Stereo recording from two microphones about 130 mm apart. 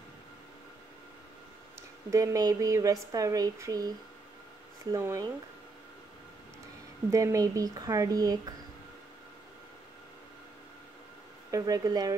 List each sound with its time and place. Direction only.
2.0 s speech: 25° right (ahead or behind)
4.9 s speech: 20° right (ahead or behind)
7.1 s speech: 25° right (ahead or behind)
11.5 s speech: 30° right (ahead or behind)